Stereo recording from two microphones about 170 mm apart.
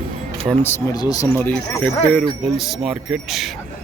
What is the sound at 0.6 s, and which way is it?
Speech, 15° left (ahead or behind).